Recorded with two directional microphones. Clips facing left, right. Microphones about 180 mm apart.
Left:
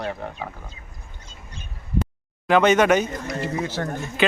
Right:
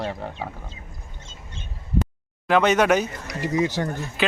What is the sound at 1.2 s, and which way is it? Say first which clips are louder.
Mouse: even; 25° right (ahead or behind).